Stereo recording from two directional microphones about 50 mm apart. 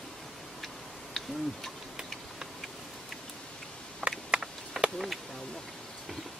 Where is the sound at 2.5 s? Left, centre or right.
Centre.